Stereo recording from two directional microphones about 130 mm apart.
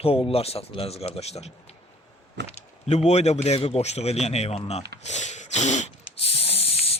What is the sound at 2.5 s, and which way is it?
Speech, 55° left (ahead or behind).